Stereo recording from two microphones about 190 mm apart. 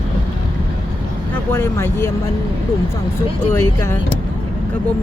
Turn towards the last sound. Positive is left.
turn(degrees=15)  # may be behind; listen again after turning